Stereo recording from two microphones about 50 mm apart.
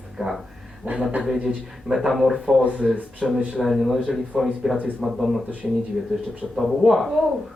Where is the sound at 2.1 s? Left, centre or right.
Centre.